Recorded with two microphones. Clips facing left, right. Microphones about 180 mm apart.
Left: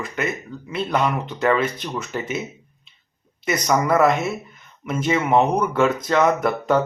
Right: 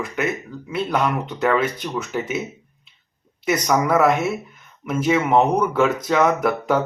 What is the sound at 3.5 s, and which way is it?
Speech, centre (ahead or behind).